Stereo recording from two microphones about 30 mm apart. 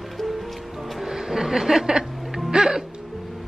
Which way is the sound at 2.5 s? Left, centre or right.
Right.